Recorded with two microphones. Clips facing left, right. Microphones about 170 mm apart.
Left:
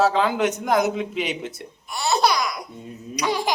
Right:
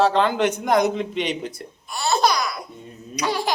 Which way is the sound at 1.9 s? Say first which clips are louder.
Even; 20° left (ahead or behind).